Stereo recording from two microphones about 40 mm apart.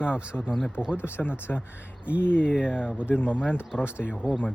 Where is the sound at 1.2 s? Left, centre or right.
Left.